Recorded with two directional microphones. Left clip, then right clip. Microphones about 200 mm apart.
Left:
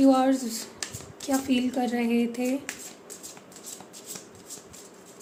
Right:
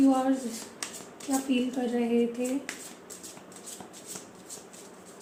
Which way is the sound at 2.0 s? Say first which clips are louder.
Even; 60° left (ahead or behind).